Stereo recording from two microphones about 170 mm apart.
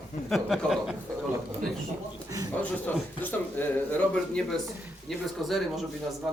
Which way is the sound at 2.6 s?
10° left (ahead or behind).